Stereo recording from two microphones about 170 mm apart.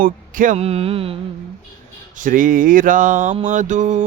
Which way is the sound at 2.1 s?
50° right (ahead or behind).